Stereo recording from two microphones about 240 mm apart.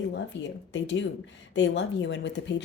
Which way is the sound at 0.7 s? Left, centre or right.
Left.